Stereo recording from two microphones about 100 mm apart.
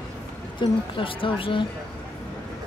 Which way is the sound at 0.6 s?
60° left (ahead or behind).